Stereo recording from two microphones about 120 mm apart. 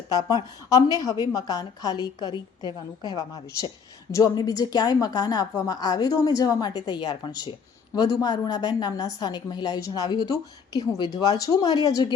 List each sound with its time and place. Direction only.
0.1 s a woman's voice: 35° left (ahead or behind)